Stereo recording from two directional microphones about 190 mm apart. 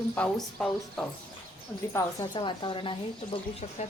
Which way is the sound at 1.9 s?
20° left (ahead or behind).